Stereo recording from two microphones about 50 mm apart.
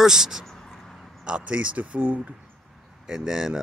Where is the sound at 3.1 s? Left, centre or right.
Centre.